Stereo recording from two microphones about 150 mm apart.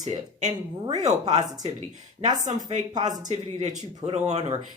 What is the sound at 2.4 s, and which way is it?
Speech, 50° right (ahead or behind).